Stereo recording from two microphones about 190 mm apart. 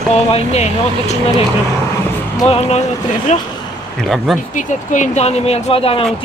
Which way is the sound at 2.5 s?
30° left (ahead or behind).